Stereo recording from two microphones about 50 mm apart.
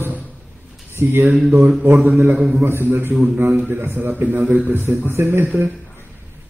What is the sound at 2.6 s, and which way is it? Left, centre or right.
Speech, right.